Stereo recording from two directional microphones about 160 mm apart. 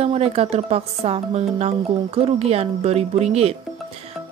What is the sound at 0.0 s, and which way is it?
Speech, 40° right (ahead or behind).